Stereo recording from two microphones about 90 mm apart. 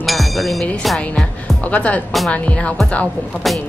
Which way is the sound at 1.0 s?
15° left (ahead or behind).